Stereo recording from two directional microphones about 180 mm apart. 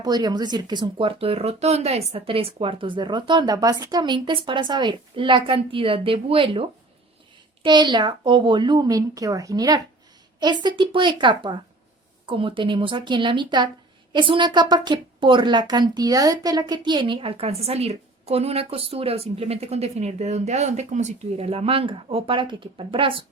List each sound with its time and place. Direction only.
0.0 s a woman's voice: 20° right (ahead or behind)